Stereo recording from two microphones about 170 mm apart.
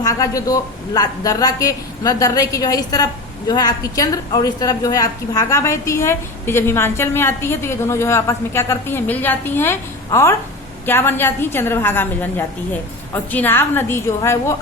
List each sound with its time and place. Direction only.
0.0 s a woman's voice: 20° left (ahead or behind)